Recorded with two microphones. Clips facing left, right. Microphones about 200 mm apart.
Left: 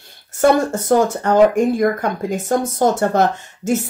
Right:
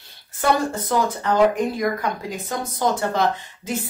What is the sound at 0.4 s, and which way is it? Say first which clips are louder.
Speech: left 6 dB; 45° left (ahead or behind).